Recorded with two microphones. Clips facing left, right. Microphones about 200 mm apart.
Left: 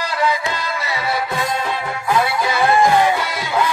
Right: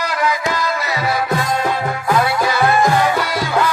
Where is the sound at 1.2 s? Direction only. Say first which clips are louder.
Right 3 dB; 45° right (ahead or behind).